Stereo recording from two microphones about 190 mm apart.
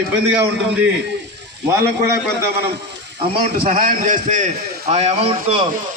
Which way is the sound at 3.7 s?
40° right (ahead or behind).